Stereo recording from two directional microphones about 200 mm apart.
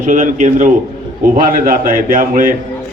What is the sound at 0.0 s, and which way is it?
A man's voice, 40° right (ahead or behind).